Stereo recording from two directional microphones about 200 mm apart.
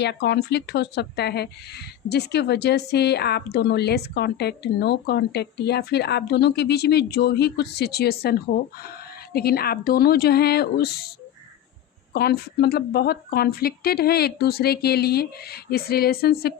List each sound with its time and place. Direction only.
0.0 s a woman's voice: 55° left (ahead or behind)
12.1 s a woman's voice: 55° left (ahead or behind)